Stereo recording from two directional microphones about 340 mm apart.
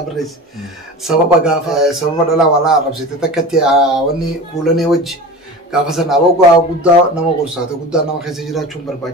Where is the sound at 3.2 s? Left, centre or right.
Centre.